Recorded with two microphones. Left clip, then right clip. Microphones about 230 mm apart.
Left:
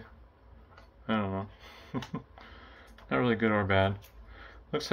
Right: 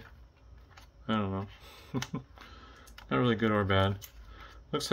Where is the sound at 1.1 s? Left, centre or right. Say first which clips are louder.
Left 1 dB; centre.